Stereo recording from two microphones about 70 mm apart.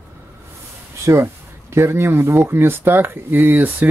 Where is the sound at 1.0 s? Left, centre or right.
Right.